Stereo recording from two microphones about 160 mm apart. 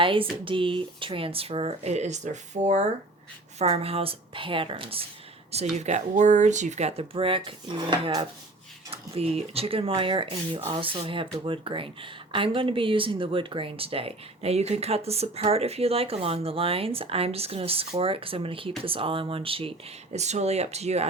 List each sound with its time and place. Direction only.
0.0 s speech: 35° right (ahead or behind)
5.7 s speech: 45° right (ahead or behind)